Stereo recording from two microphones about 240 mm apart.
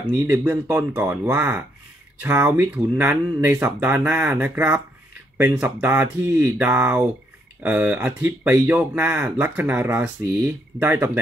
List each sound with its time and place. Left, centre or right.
0.1 s speech: centre